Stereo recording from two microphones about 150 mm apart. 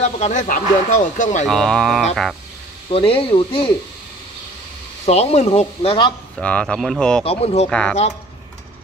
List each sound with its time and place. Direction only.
0.0 s speech: 50° left (ahead or behind)
1.5 s speech: 5° left (ahead or behind)
2.9 s speech: 40° left (ahead or behind)
5.0 s speech: 45° left (ahead or behind)
6.3 s speech: 5° left (ahead or behind)
7.2 s speech: 40° left (ahead or behind)